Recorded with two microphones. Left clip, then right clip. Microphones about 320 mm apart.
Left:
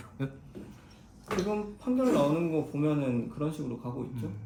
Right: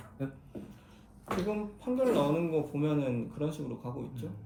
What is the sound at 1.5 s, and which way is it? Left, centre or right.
Speech, centre.